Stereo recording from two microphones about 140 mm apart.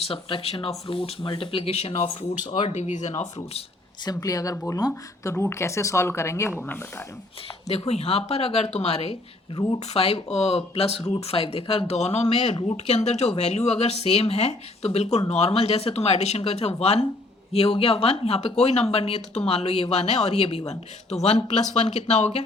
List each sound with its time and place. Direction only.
0.0 s speech: 40° left (ahead or behind)
4.0 s speech: 25° left (ahead or behind)
4.5 s speech: 15° left (ahead or behind)
7.9 s speech: 45° left (ahead or behind)